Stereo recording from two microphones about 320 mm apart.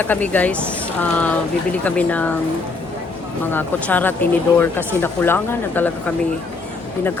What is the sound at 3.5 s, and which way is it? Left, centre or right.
Speech, centre.